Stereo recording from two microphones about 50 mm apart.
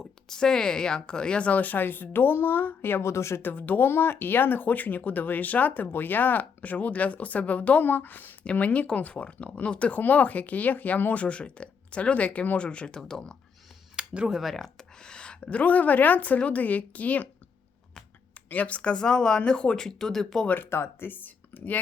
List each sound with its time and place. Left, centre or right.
0.0 s speech: centre; by 3.0 s left
3.0 s a woman's voice: left
3.4 s speech: left
8.4 s speech: left
13.0 s speech: centre
13.9 s a sound: right
14.3 s speech: centre
14.5 s speech: centre; by 17.2 s left
18.3 s speech: left; by 20.5 s centre
20.7 s speech: left
21.1 s speech: left